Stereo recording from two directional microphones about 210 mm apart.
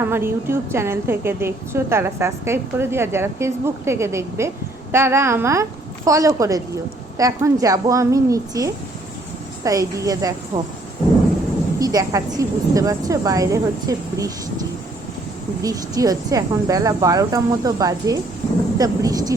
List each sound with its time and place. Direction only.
0.0 s a woman's voice: 10° right (ahead or behind)
11.8 s a woman's voice: 15° right (ahead or behind)